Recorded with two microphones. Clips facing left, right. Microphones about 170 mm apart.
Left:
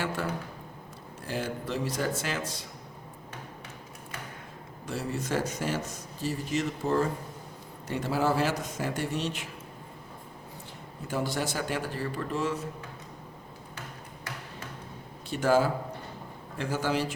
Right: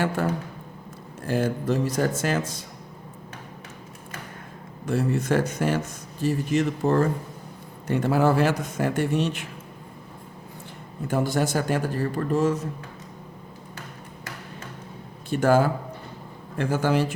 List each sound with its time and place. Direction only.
1.2 s a man's voice: 50° right (ahead or behind)
4.9 s a man's voice: 55° right (ahead or behind)
11.1 s a man's voice: 50° right (ahead or behind)
15.3 s a man's voice: 50° right (ahead or behind)